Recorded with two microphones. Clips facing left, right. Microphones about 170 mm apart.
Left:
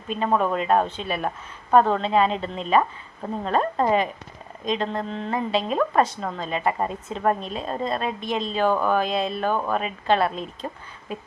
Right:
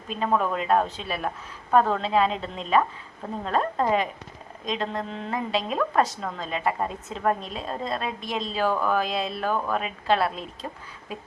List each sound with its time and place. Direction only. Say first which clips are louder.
0.3 s a woman's voice: left 2 dB; centre (ahead or behind)